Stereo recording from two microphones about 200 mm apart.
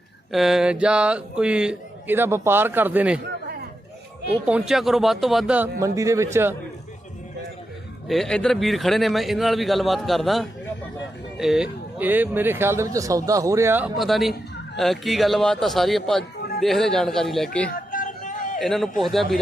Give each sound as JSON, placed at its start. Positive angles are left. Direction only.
{"t": 0.3, "sound": "speech", "side_deg": 0}
{"t": 4.3, "sound": "speech", "side_deg": -5}
{"t": 5.8, "sound": "speech", "side_deg": -15}
{"t": 8.0, "sound": "speech", "side_deg": 0}
{"t": 17.7, "sound": "a sound", "side_deg": 45}
{"t": 18.6, "sound": "speech", "side_deg": 0}